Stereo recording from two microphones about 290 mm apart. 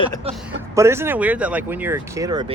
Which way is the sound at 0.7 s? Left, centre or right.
Centre.